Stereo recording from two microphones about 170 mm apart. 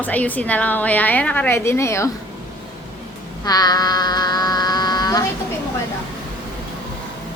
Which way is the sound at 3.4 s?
25° left (ahead or behind).